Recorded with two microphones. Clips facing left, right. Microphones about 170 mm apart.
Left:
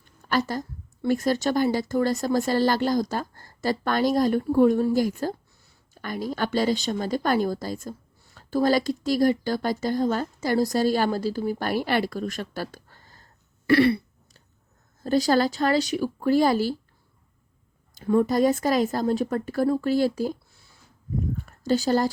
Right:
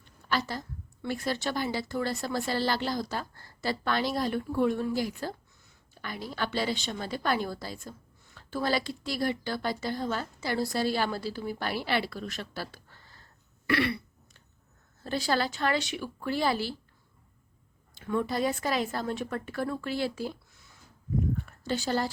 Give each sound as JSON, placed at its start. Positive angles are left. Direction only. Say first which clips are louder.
{"t": 0.3, "sound": "a woman's voice", "louder": "left 6 dB", "side_deg": 45}
{"t": 13.7, "sound": "throat clearing", "louder": "left 9 dB", "side_deg": 35}
{"t": 15.0, "sound": "a woman's voice", "louder": "left 8 dB", "side_deg": 40}
{"t": 17.9, "sound": "a woman's voice", "louder": "left 8 dB", "side_deg": 40}